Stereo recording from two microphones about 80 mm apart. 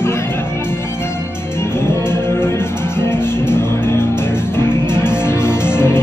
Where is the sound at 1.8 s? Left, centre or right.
Left.